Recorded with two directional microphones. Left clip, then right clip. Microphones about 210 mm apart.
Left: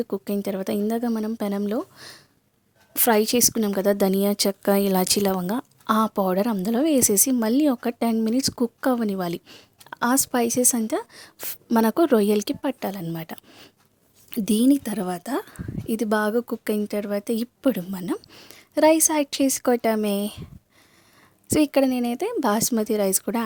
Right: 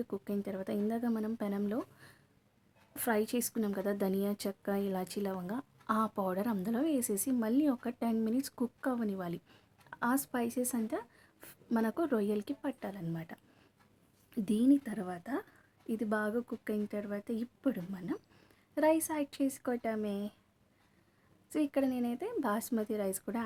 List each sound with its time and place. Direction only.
0.0 s a woman's voice: 40° left (ahead or behind)
21.5 s a woman's voice: 45° left (ahead or behind)